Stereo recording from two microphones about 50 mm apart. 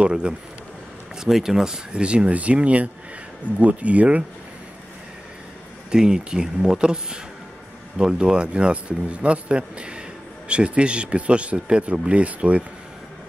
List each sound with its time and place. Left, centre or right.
0.0 s speech: centre
5.9 s speech: centre